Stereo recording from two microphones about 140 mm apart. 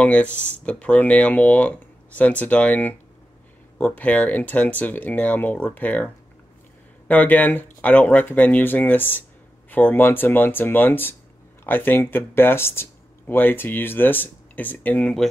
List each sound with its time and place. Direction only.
0.0 s speech: 10° left (ahead or behind)
7.1 s speech: 10° left (ahead or behind)